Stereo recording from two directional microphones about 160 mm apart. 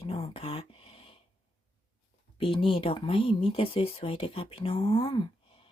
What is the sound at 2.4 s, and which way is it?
Speech, 35° left (ahead or behind).